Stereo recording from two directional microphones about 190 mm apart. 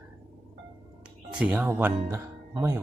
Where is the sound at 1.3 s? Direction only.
5° right (ahead or behind).